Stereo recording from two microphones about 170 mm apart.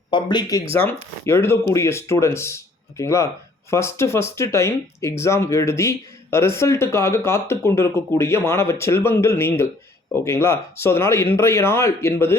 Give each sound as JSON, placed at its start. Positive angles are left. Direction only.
{"t": 0.1, "sound": "speech", "side_deg": 25}